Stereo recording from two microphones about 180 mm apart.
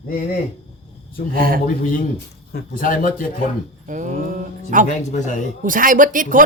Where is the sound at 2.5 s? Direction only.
50° left (ahead or behind).